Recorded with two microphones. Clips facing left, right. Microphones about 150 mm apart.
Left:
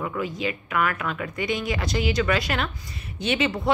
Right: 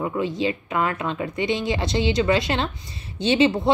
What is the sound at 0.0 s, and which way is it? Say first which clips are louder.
Speech: right 4 dB; 25° right (ahead or behind).